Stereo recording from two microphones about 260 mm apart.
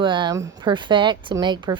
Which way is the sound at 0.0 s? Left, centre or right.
Centre.